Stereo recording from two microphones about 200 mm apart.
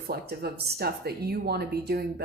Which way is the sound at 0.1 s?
50° right (ahead or behind).